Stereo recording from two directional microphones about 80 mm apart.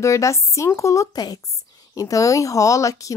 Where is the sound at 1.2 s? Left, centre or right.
Left.